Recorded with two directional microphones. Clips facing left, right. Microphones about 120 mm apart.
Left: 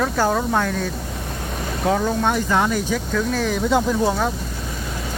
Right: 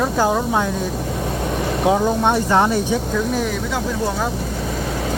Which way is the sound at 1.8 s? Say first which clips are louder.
Right 2 dB; 15° right (ahead or behind).